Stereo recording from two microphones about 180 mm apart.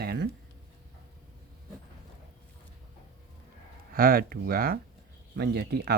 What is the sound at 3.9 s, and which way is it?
Speech, 55° right (ahead or behind).